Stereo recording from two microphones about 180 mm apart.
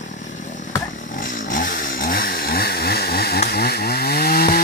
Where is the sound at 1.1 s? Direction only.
50° left (ahead or behind).